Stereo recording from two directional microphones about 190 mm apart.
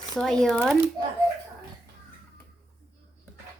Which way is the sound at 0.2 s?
5° left (ahead or behind).